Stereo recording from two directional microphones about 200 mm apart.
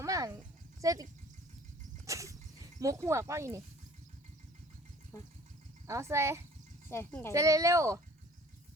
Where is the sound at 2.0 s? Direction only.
15° right (ahead or behind).